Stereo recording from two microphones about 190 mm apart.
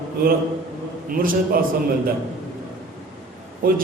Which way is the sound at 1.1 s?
50° right (ahead or behind).